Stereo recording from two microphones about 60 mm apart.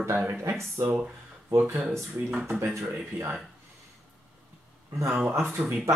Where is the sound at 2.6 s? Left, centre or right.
Right.